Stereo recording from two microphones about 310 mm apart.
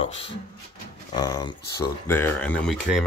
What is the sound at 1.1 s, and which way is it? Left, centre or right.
Speech, centre.